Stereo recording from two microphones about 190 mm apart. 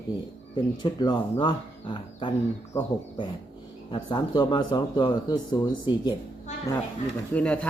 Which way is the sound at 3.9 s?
25° left (ahead or behind).